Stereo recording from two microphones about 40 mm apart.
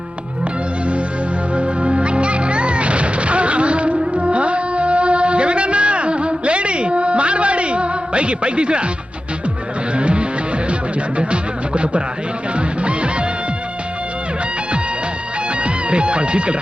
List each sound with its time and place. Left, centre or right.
1.5 s music: right
9.9 s music: right
15.6 s speech: right